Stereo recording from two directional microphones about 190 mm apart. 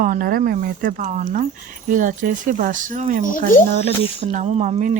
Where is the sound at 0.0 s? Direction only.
50° right (ahead or behind).